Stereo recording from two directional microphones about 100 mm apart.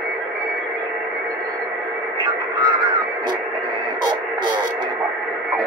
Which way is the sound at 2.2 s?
45° right (ahead or behind).